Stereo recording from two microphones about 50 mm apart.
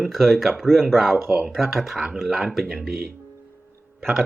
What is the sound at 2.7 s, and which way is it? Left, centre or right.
Speech, centre.